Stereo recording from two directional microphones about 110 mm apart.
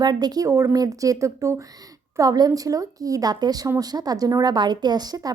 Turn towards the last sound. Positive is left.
turn(degrees=-35)  # may be behind; listen again after turning